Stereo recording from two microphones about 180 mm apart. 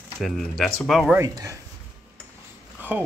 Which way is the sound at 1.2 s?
20° right (ahead or behind).